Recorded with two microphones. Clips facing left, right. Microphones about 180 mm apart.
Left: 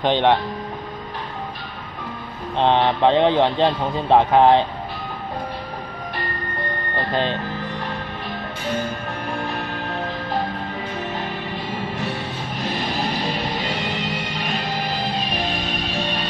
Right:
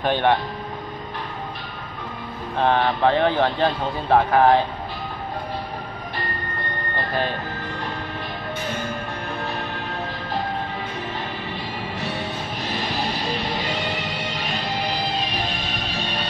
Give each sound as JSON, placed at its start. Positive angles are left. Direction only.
{"t": 0.0, "sound": "speech", "side_deg": 20}
{"t": 2.5, "sound": "speech", "side_deg": 20}